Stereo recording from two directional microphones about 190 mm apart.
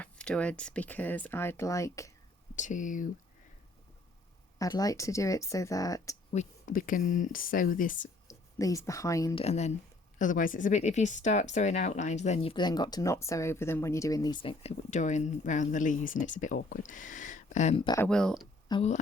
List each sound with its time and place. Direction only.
0.0 s speech: 5° left (ahead or behind)
2.6 s speech: 40° left (ahead or behind)
4.5 s speech: 20° left (ahead or behind)
6.3 s speech: 40° left (ahead or behind)
8.3 s a woman's voice: 15° left (ahead or behind)
9.3 s speech: 35° left (ahead or behind)
14.6 s speech: 35° left (ahead or behind)
18.0 s speech: 5° left (ahead or behind)
18.7 s speech: 35° left (ahead or behind)